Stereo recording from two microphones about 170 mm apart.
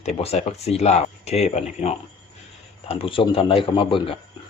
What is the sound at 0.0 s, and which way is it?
Speech, 40° left (ahead or behind).